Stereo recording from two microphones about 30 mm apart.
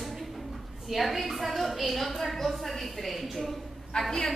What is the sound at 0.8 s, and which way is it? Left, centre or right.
A woman's voice, centre.